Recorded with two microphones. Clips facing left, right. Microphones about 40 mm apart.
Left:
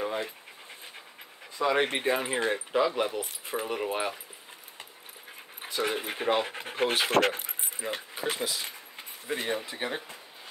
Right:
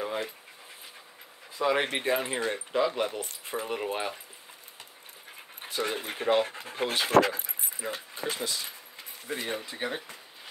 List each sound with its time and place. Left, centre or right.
1.6 s speech: centre
5.6 s speech: centre
6.5 s speech: left
7.1 s speech: left
7.8 s speech: centre